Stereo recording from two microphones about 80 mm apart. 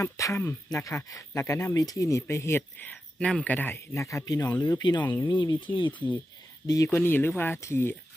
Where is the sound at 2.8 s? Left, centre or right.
Centre.